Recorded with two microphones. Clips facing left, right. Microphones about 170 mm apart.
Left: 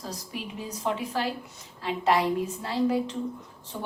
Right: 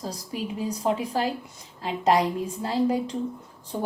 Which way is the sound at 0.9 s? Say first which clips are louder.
Right 3 dB; 35° right (ahead or behind).